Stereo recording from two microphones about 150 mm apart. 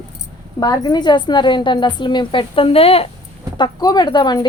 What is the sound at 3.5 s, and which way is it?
Speech, 30° left (ahead or behind).